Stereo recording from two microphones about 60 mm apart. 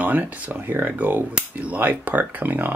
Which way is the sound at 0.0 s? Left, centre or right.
Right.